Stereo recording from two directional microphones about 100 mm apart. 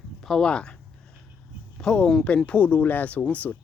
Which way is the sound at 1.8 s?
5° left (ahead or behind).